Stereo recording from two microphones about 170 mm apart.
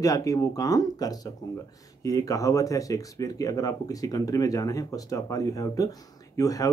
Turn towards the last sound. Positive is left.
turn(degrees=20)  # may be behind; listen again after turning